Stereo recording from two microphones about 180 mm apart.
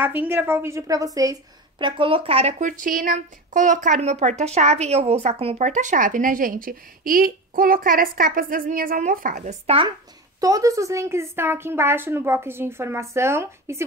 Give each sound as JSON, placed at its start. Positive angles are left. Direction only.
{"t": 0.0, "sound": "a woman's voice", "side_deg": -10}
{"t": 10.4, "sound": "a woman's voice", "side_deg": -20}